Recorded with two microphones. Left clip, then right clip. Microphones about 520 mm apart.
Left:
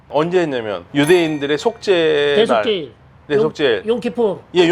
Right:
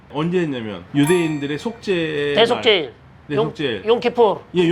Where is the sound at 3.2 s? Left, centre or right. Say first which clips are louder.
Left 6 dB; left.